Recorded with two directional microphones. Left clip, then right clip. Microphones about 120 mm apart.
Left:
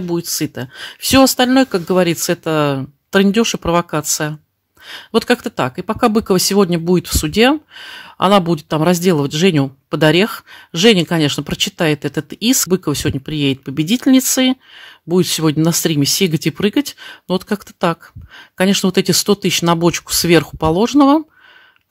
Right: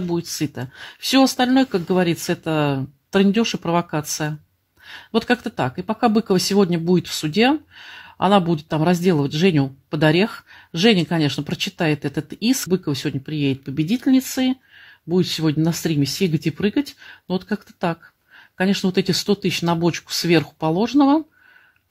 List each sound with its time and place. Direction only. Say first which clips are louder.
0.0 s speech: left 4 dB; 30° left (ahead or behind)
12.6 s speech: left 5 dB; 40° left (ahead or behind)